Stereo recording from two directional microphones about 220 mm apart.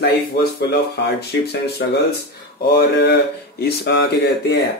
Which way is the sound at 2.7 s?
50° left (ahead or behind).